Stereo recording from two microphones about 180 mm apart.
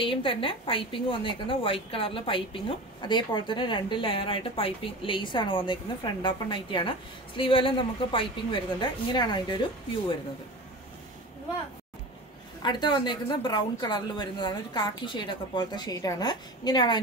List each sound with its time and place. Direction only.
0.0 s a woman's voice: 30° left (ahead or behind)
12.6 s a woman's voice: 25° left (ahead or behind)